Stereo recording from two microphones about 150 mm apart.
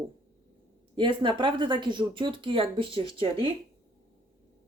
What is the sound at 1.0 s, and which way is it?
Speech, 35° right (ahead or behind).